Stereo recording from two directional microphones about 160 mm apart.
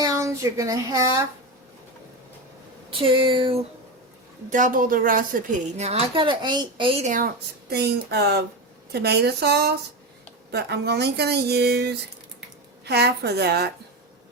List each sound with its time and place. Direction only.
0.0 s speech: 20° right (ahead or behind)
2.9 s speech: 35° right (ahead or behind)
4.4 s a woman's voice: 55° right (ahead or behind); by 6.9 s 30° right (ahead or behind)
7.0 s speech: 55° right (ahead or behind)
7.7 s a woman's voice: 90° right